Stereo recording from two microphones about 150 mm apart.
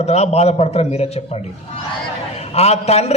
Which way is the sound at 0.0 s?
45° left (ahead or behind).